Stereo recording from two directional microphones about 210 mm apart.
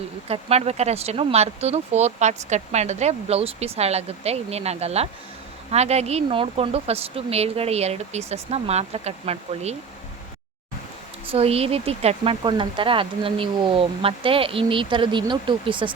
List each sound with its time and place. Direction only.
0.3 s speech: 30° right (ahead or behind)
11.3 s speech: 30° right (ahead or behind)